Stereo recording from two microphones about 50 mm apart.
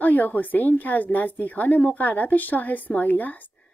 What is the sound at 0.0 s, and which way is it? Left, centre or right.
A woman's voice, left.